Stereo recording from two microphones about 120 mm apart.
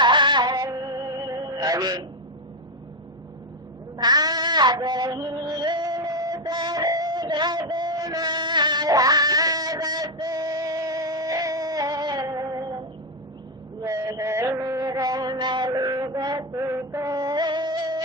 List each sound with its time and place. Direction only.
0.0 s music: 40° right (ahead or behind)
3.9 s female singing: 35° right (ahead or behind)
13.8 s music: 30° right (ahead or behind)